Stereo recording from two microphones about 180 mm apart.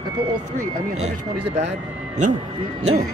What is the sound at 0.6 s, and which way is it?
Speech, 40° right (ahead or behind).